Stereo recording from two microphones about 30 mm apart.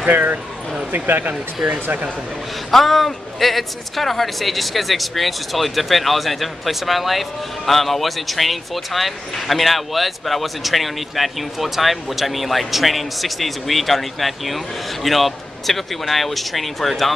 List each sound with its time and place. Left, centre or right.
0.1 s speech: right
2.7 s speech: centre